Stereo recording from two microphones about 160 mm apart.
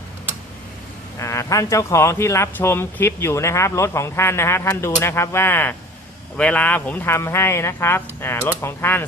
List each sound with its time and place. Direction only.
1.2 s speech: 20° left (ahead or behind)